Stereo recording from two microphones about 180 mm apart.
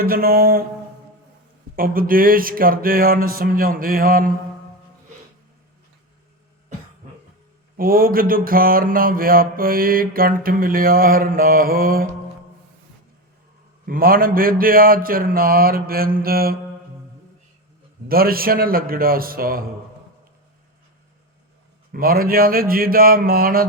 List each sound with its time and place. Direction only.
0.0 s a man's voice: 55° right (ahead or behind)
1.7 s mantra: 55° right (ahead or behind)
7.8 s mantra: 55° right (ahead or behind)
13.8 s a man's voice: 55° right (ahead or behind)
18.1 s a man's voice: 55° right (ahead or behind)
21.9 s a man's voice: 55° right (ahead or behind)